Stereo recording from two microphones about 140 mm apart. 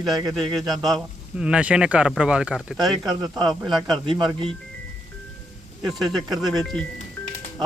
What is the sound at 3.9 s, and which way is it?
Speech, 35° right (ahead or behind).